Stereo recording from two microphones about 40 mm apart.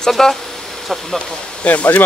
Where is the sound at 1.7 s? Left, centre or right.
Left.